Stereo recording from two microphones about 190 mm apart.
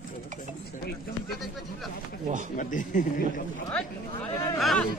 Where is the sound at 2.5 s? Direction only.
45° left (ahead or behind).